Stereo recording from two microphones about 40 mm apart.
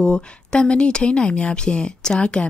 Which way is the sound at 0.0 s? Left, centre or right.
Left.